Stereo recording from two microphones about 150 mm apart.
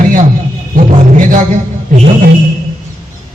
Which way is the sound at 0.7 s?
60° right (ahead or behind).